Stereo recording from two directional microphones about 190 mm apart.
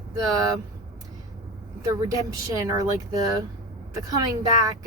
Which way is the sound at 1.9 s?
15° right (ahead or behind).